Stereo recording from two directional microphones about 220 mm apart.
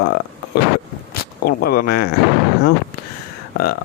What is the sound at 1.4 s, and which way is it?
Speech, 45° left (ahead or behind).